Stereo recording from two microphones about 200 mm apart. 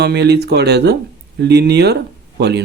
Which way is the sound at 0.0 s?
55° right (ahead or behind).